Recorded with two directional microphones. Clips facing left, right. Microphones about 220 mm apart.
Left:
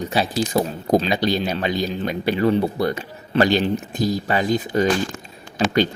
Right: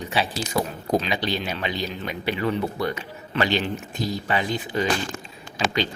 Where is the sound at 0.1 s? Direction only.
40° left (ahead or behind).